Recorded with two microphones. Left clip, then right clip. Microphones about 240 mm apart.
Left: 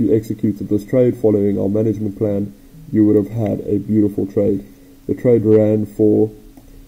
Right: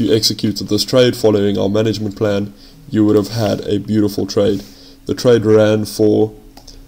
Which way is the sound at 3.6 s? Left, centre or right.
Right.